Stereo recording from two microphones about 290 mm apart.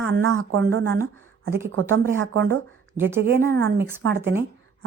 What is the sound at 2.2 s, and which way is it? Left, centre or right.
Speech, right.